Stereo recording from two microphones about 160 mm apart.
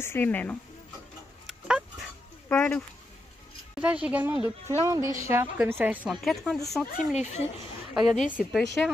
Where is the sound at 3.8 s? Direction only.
10° right (ahead or behind).